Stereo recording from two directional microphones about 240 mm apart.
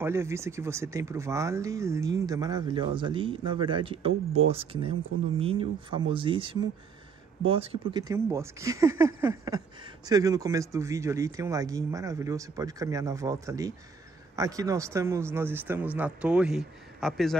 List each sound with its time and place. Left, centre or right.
0.0 s speech: centre